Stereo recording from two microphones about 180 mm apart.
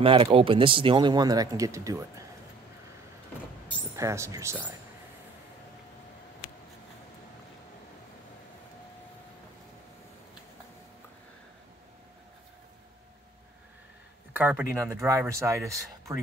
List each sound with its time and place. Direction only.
0.0 s speech: 30° right (ahead or behind)
3.9 s speech: 15° right (ahead or behind)
14.3 s speech: 10° right (ahead or behind)